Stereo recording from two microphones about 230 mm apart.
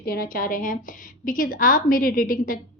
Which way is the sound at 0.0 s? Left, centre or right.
Left.